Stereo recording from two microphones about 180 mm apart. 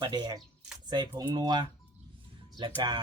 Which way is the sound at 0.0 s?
25° right (ahead or behind).